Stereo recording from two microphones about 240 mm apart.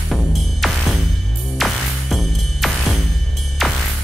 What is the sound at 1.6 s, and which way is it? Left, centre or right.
Music, centre.